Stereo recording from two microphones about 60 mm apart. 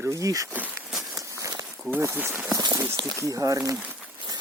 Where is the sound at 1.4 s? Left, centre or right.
Right.